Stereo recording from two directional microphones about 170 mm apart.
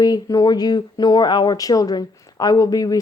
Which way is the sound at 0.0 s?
20° left (ahead or behind).